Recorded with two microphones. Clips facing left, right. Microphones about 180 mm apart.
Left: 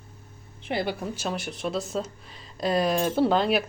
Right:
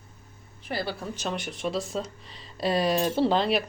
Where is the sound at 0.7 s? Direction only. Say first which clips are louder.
Left 3 dB; 15° left (ahead or behind).